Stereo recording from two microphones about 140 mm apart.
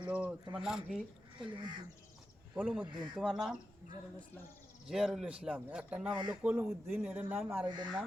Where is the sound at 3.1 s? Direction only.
Centre (ahead or behind).